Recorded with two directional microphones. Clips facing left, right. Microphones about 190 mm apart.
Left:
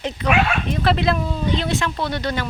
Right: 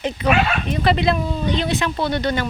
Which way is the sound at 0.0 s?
Centre (ahead or behind).